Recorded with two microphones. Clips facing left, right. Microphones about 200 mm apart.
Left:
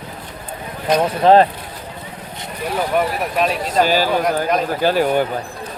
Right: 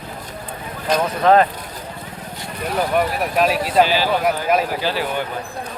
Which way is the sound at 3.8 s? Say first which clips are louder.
Left 2 dB; 45° left (ahead or behind).